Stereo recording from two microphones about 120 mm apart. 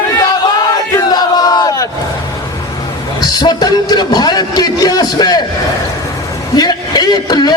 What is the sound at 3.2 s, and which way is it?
A man's voice, 35° left (ahead or behind).